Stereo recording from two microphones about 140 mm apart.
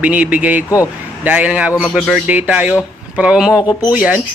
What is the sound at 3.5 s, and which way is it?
Speech, 25° left (ahead or behind).